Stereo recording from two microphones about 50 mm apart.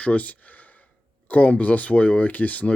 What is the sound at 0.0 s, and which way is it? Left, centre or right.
Speech, left.